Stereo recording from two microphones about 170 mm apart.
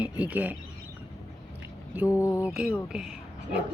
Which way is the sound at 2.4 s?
5° right (ahead or behind).